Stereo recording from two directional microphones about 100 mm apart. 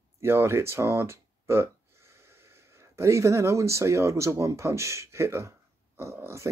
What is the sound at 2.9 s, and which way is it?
Speech, 30° right (ahead or behind).